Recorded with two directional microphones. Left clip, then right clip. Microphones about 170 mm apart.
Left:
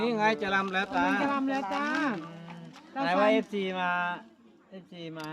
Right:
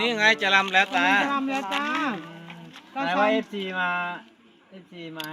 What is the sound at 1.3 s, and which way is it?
Speech, 20° right (ahead or behind).